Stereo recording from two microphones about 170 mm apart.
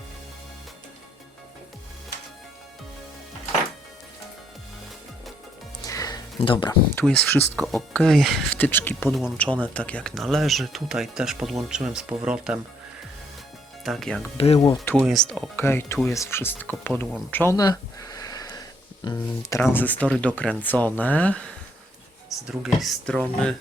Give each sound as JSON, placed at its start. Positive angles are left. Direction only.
{"t": 5.8, "sound": "a sound", "side_deg": 20}
{"t": 6.9, "sound": "speech", "side_deg": 10}
{"t": 9.0, "sound": "speech", "side_deg": -5}
{"t": 9.4, "sound": "speech", "side_deg": 10}
{"t": 13.8, "sound": "speech", "side_deg": 0}
{"t": 14.3, "sound": "speech", "side_deg": 35}
{"t": 14.6, "sound": "speech", "side_deg": 20}
{"t": 14.9, "sound": "speech", "side_deg": 0}
{"t": 17.3, "sound": "a sound", "side_deg": 15}
{"t": 19.1, "sound": "speech", "side_deg": 15}